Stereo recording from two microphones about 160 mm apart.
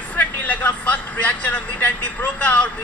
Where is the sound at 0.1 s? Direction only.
10° left (ahead or behind).